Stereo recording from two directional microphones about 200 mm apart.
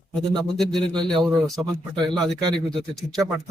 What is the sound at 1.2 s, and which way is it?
Speech, 15° right (ahead or behind).